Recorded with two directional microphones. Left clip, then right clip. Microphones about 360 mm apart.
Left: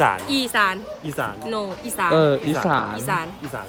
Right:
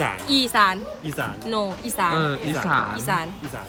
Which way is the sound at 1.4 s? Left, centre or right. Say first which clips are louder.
Right 1 dB; centre.